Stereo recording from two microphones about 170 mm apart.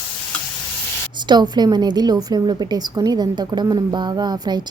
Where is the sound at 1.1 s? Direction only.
25° right (ahead or behind).